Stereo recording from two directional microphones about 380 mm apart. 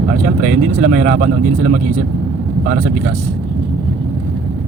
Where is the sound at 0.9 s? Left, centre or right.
Right.